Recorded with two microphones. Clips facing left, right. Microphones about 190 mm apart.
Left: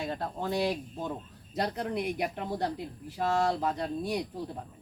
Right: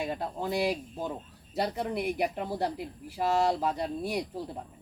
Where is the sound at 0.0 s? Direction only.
10° right (ahead or behind).